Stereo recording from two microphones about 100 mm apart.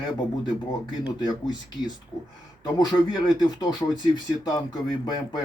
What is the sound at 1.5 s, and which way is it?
Speech, 45° left (ahead or behind).